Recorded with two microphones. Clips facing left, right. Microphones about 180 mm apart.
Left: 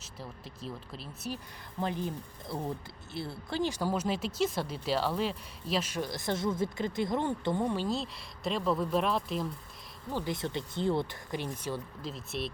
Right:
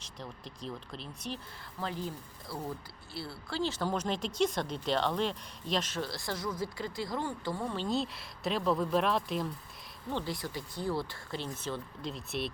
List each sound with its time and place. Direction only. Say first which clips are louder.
0.0 s speech: even; 5° left (ahead or behind)
1.8 s speech: left 4 dB; 20° left (ahead or behind)
7.9 s speech: right 1 dB; centre (ahead or behind)
10.2 s speech: left 4 dB; 25° left (ahead or behind)
12.1 s speech: even; centre (ahead or behind)